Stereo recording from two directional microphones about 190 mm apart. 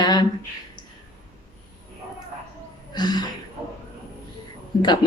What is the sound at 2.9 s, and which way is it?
Speech, 20° left (ahead or behind).